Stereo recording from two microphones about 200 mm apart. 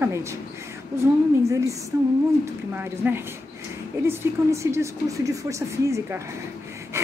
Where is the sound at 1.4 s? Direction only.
15° right (ahead or behind).